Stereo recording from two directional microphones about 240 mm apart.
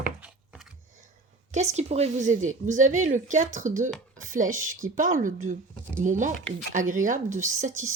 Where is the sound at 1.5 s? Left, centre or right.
Right.